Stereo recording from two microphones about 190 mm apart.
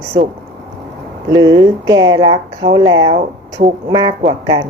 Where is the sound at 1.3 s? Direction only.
25° right (ahead or behind).